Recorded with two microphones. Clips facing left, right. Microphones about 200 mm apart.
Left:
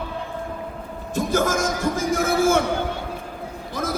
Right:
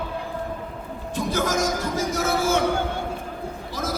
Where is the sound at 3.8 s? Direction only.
55° left (ahead or behind).